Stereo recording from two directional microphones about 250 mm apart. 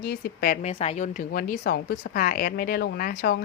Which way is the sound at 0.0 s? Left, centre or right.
Left.